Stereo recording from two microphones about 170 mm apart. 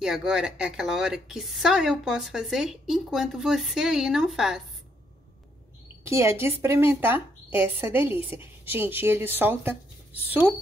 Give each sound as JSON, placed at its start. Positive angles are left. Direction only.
{"t": 0.0, "sound": "a woman's voice", "side_deg": -5}
{"t": 6.0, "sound": "a woman's voice", "side_deg": -15}